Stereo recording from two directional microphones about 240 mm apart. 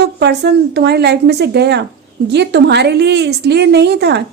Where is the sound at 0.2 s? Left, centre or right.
Right.